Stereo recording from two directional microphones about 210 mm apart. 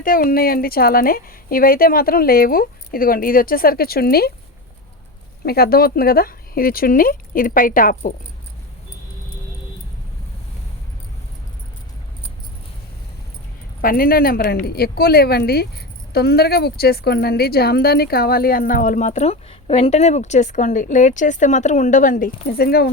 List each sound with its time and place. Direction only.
0.0 s a woman's voice: 40° left (ahead or behind)
5.5 s a woman's voice: 45° left (ahead or behind)
13.8 s a woman's voice: 45° left (ahead or behind)